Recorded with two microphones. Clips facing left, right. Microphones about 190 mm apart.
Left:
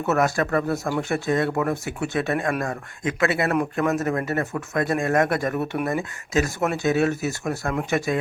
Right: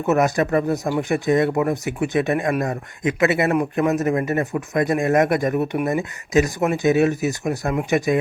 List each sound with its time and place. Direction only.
0.0 s speech: 15° right (ahead or behind)